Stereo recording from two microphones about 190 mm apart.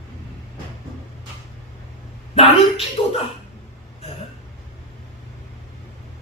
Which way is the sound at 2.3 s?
30° left (ahead or behind).